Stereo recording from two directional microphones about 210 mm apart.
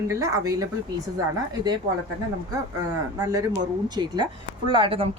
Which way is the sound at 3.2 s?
15° right (ahead or behind).